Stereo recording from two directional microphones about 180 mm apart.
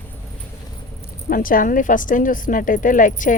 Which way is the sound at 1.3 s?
50° left (ahead or behind).